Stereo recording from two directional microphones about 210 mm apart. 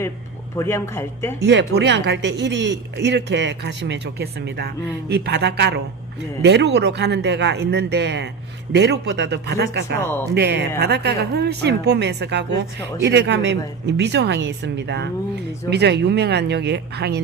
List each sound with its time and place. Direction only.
0.5 s a man's voice: 10° left (ahead or behind)
1.5 s speech: 55° right (ahead or behind)
10.0 s a man's voice: 10° left (ahead or behind)
10.3 s speech: 50° right (ahead or behind)